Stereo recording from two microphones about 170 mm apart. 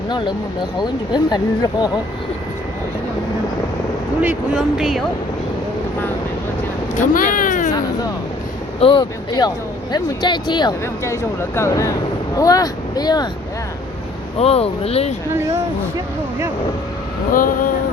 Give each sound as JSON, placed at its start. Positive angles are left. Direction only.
{"t": 0.8, "sound": "speech", "side_deg": 25}
{"t": 4.2, "sound": "speech", "side_deg": -5}
{"t": 6.9, "sound": "speech", "side_deg": 50}
{"t": 8.8, "sound": "speech", "side_deg": 25}
{"t": 14.3, "sound": "speech", "side_deg": 35}
{"t": 17.3, "sound": "speech", "side_deg": 55}